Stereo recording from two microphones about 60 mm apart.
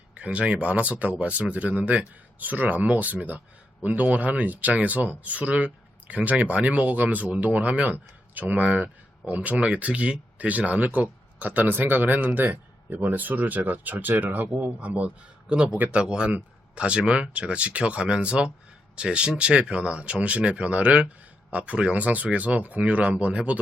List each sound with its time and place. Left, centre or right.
0.1 s speech: centre